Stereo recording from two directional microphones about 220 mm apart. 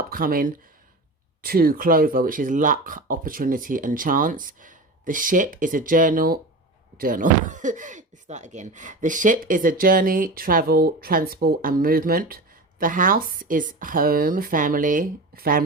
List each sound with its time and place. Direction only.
0.0 s speech: 40° right (ahead or behind)